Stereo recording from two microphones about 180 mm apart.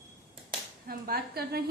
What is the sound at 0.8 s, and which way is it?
Speech, 55° right (ahead or behind).